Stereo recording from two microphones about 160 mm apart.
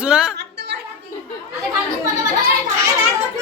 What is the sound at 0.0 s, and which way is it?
Music, 5° right (ahead or behind).